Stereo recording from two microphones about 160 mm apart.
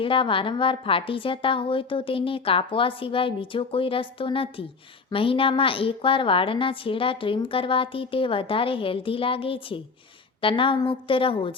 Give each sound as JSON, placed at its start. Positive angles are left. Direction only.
{"t": 0.0, "sound": "a woman's voice", "side_deg": 30}